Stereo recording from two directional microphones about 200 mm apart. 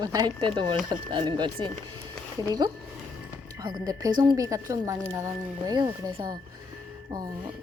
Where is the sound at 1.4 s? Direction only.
20° right (ahead or behind).